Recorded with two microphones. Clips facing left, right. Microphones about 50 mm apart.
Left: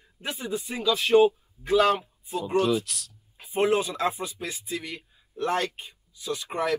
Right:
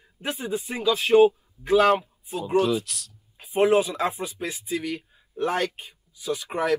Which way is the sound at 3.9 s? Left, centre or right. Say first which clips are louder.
Right 1 dB; right.